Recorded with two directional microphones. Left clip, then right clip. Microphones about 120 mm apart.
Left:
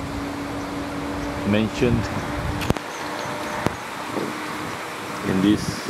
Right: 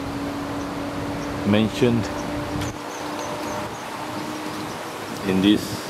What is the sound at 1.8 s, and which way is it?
Speech, 15° right (ahead or behind).